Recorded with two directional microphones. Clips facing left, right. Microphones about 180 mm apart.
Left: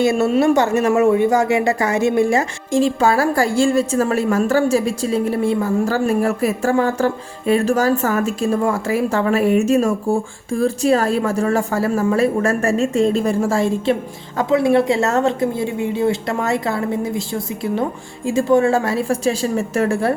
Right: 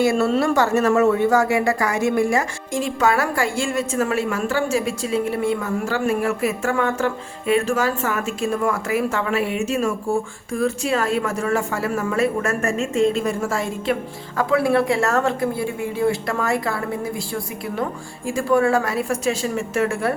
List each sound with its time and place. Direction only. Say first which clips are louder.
0.0 s a woman's voice: left 3 dB; 20° left (ahead or behind)